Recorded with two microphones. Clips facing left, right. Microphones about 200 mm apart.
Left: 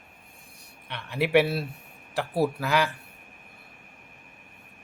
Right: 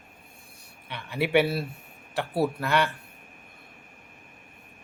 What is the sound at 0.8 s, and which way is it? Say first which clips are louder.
Speech: left 1 dB; centre (ahead or behind).